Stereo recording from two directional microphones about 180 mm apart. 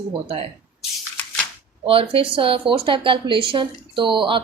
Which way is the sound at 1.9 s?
30° right (ahead or behind).